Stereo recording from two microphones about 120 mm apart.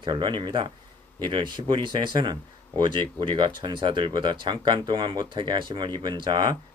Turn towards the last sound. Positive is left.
turn(degrees=-35)  # may be behind; listen again after turning